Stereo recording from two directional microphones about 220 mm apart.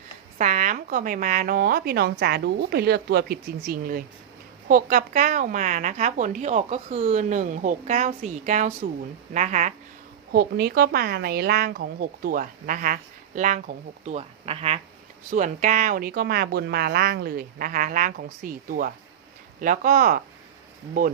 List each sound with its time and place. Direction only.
0.3 s a woman's voice: 35° right (ahead or behind)
10.3 s a woman's voice: 45° right (ahead or behind)